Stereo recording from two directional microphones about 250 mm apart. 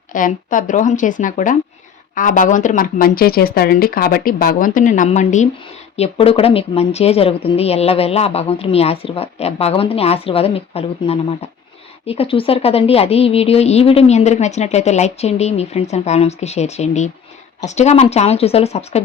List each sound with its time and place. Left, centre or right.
0.1 s speech: left